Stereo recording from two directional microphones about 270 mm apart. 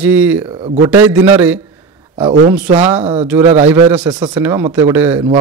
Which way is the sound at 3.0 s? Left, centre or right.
Right.